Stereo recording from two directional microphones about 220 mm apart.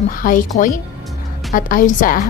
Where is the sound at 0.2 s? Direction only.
35° left (ahead or behind).